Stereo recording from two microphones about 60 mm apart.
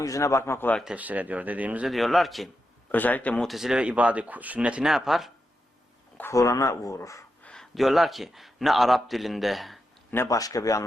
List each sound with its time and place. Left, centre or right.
0.0 s speech: left
0.9 s speech: right
1.9 s a man's voice: centre
2.9 s speech: left
3.4 s a man's voice: centre
3.8 s speech: right
4.9 s a man's voice: centre
6.3 s speech: left
7.8 s a man's voice: centre
10.2 s speech: left